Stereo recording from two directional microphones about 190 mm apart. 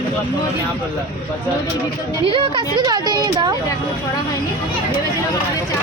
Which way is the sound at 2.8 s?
20° right (ahead or behind).